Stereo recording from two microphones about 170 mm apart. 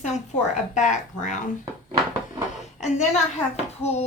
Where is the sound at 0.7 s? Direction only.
45° left (ahead or behind).